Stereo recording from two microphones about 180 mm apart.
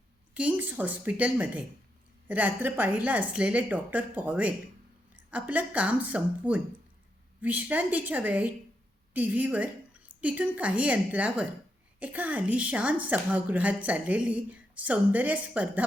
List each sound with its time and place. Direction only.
0.3 s a woman's voice: 10° right (ahead or behind)